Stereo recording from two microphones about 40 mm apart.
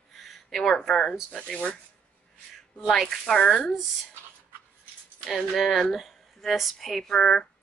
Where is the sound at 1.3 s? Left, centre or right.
Left.